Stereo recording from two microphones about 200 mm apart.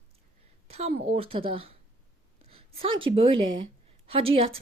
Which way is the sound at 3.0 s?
25° right (ahead or behind).